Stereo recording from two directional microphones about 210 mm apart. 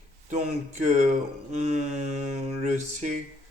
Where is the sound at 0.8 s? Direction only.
35° right (ahead or behind).